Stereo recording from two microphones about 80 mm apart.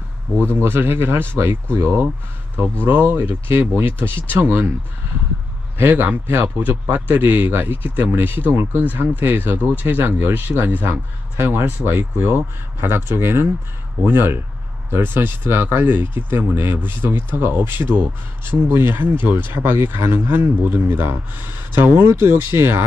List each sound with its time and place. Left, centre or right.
0.4 s speech: right
5.8 s speech: right